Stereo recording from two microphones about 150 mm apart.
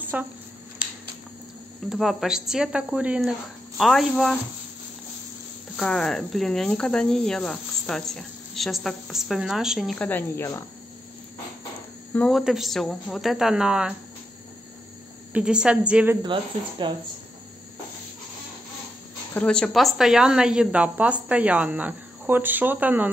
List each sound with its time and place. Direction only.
0.1 s a woman's voice: 10° right (ahead or behind)
1.9 s speech: centre (ahead or behind)
5.8 s speech: 5° left (ahead or behind)
9.9 s speech: 10° left (ahead or behind)
12.1 s speech: 5° left (ahead or behind)
15.3 s a woman's voice: 5° right (ahead or behind)
16.3 s speech: 30° right (ahead or behind)
19.3 s a woman's voice: 5° left (ahead or behind); by 23.1 s 10° right (ahead or behind)